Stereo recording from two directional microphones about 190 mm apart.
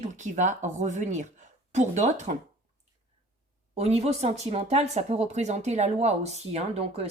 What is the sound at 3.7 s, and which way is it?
Speech, 35° right (ahead or behind).